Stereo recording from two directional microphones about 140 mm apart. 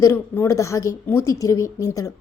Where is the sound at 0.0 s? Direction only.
20° left (ahead or behind).